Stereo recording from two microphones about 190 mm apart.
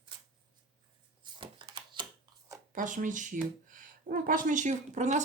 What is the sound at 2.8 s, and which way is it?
Speech, 45° right (ahead or behind).